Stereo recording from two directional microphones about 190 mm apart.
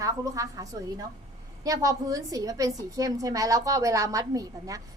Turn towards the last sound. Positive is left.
turn(degrees=-20)  # may be behind; listen again after turning